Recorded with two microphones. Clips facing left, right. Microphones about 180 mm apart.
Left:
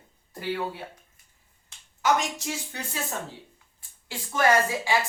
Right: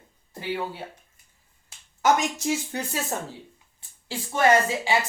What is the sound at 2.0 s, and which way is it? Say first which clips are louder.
Speech: right 3 dB; 45° right (ahead or behind).